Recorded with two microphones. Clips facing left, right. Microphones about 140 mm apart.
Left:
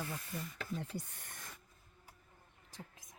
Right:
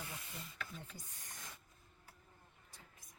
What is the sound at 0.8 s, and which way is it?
Speech, 70° left (ahead or behind).